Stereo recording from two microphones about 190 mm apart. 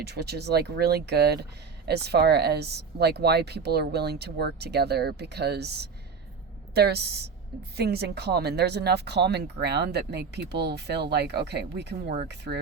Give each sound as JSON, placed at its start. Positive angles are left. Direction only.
{"t": 0.0, "sound": "speech", "side_deg": -60}